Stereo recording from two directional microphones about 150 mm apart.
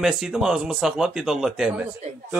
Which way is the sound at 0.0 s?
5° right (ahead or behind).